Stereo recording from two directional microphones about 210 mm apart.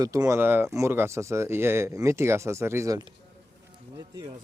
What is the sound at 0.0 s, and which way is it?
Speech, 15° right (ahead or behind).